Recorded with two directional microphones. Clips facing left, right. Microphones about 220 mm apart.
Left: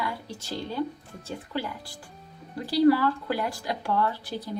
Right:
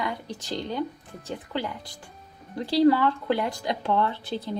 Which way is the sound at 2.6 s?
25° right (ahead or behind).